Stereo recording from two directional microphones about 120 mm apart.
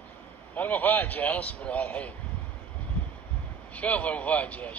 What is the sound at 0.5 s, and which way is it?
Speech, 15° left (ahead or behind).